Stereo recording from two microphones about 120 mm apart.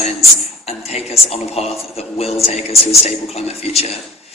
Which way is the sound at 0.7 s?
60° left (ahead or behind).